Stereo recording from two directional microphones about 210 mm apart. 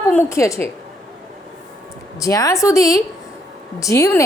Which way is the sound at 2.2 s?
15° left (ahead or behind).